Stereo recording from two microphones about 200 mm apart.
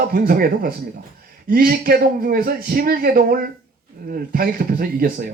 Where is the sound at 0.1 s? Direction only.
50° right (ahead or behind).